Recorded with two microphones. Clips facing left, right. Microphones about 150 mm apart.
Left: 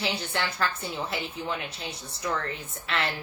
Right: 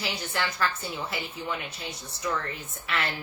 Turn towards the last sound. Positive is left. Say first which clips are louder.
# left 1 dB
turn(degrees=30)  # may be behind; listen again after turning